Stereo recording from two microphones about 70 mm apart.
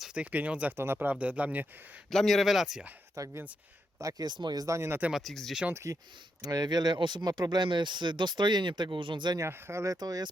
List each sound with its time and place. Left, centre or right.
0.0 s a sound: centre
0.3 s speech: right
2.0 s speech: centre
3.2 s speech: right
4.0 s speech: right
4.6 s speech: right
4.9 s speech: right
5.1 s speech: centre
5.7 s speech: right
6.4 s speech: right
9.4 s speech: right
9.8 s speech: right